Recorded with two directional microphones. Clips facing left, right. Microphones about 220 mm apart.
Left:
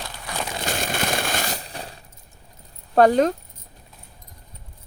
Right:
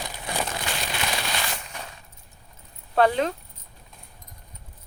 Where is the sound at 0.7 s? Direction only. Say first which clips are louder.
Left 5 dB; 45° left (ahead or behind).